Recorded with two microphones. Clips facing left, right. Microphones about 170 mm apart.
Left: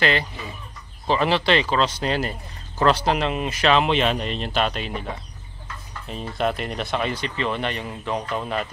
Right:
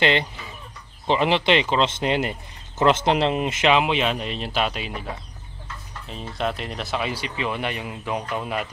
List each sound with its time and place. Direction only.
0.0 s speech: 20° right (ahead or behind)
3.7 s speech: 5° right (ahead or behind)